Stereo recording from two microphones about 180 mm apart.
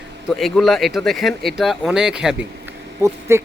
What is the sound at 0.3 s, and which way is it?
Speech, centre (ahead or behind).